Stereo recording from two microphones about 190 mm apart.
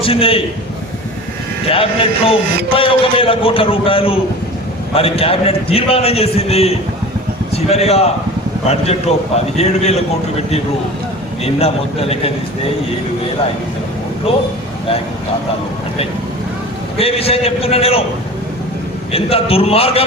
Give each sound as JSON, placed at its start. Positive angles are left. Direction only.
{"t": 0.0, "sound": "a man's voice", "side_deg": 30}
{"t": 1.7, "sound": "a man's voice", "side_deg": 30}
{"t": 14.3, "sound": "a man's voice", "side_deg": 30}
{"t": 17.0, "sound": "a man's voice", "side_deg": 30}
{"t": 19.1, "sound": "a man's voice", "side_deg": 30}